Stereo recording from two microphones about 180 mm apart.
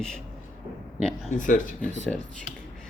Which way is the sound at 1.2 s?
45° left (ahead or behind).